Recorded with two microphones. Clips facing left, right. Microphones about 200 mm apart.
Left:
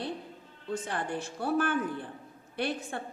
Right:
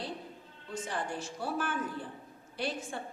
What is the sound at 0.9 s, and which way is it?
A woman's voice, 60° left (ahead or behind).